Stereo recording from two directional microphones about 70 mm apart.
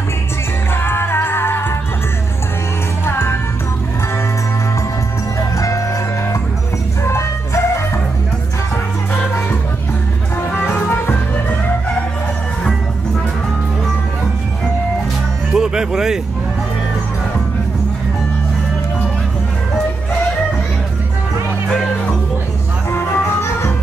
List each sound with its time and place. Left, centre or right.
0.8 s music: left
3.1 s music: left
5.6 s music: left
7.1 s music: left
15.5 s music: centre
22.8 s music: left